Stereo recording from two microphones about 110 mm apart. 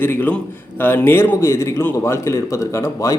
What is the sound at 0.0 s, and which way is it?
A man's voice, 15° left (ahead or behind).